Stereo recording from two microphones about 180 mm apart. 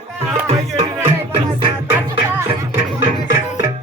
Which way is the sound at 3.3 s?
20° right (ahead or behind).